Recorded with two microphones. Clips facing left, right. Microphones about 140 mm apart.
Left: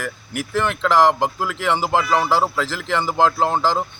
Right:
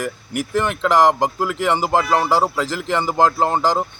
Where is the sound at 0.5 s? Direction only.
10° right (ahead or behind).